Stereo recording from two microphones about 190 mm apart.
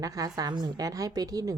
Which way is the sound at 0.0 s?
20° right (ahead or behind).